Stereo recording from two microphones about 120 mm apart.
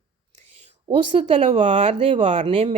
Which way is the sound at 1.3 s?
50° right (ahead or behind).